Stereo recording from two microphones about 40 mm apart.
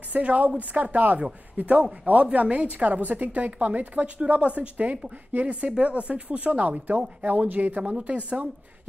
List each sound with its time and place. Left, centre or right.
0.1 s speech: right
7.8 s speech: right